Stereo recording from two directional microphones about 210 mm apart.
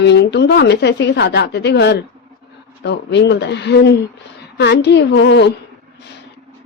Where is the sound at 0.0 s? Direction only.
55° left (ahead or behind).